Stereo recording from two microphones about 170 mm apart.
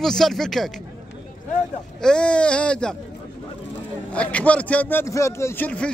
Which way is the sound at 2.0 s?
5° left (ahead or behind).